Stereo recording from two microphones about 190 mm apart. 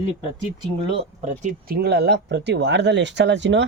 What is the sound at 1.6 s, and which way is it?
Speech, 55° right (ahead or behind).